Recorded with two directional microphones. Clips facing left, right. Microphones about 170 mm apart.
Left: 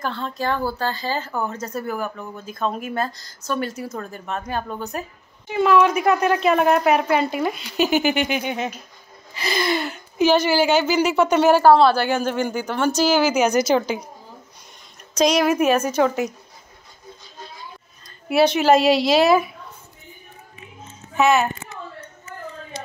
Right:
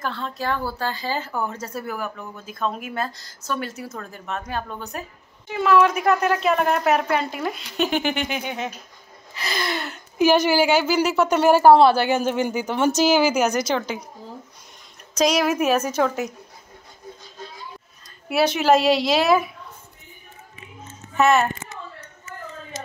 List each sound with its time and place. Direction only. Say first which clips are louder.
0.0 s a woman's voice: left 2 dB; centre (ahead or behind)
10.2 s a woman's voice: even; 15° right (ahead or behind)
11.6 s a woman's voice: right 1 dB; 20° right (ahead or behind); by 13.9 s 5° left (ahead or behind)
15.1 s a woman's voice: left 2 dB; 5° right (ahead or behind)
18.3 s a woman's voice: left 2 dB; centre (ahead or behind)
21.2 s a woman's voice: even; centre (ahead or behind)